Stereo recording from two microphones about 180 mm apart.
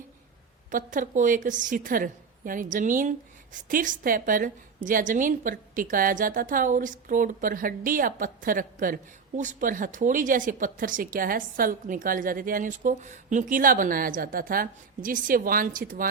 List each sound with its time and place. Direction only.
0.7 s a woman's voice: 45° right (ahead or behind)